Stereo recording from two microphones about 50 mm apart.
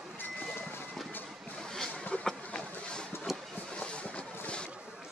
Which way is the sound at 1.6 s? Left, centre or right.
Centre.